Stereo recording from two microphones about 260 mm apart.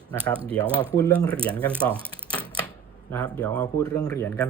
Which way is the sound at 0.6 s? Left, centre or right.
Centre.